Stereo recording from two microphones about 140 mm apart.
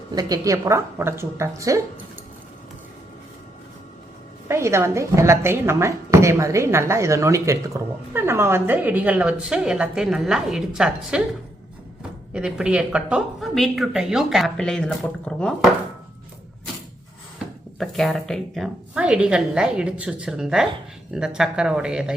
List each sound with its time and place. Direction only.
0.1 s a woman's voice: 25° right (ahead or behind)
4.4 s speech: 20° right (ahead or behind)
12.3 s speech: 5° right (ahead or behind)
17.7 s speech: centre (ahead or behind)